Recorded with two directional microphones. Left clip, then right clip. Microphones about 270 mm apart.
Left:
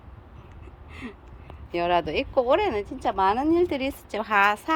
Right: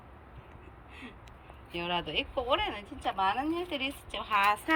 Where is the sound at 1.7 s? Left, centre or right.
Centre.